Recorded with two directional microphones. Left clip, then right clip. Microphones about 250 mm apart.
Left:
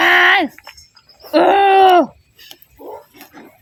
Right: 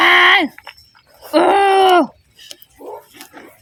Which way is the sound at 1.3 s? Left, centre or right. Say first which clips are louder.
Left 1 dB; centre.